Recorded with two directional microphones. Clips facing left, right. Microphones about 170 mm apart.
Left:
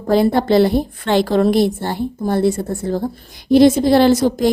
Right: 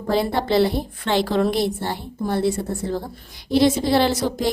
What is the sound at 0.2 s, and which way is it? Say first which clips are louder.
A woman's voice: left 5 dB; 50° left (ahead or behind).